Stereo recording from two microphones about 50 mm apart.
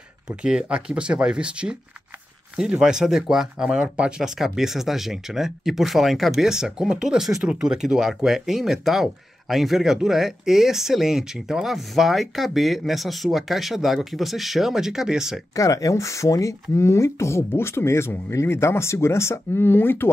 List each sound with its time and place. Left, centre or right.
0.4 s speech: centre
4.2 s speech: centre
15.5 s speech: left
19.6 s speech: left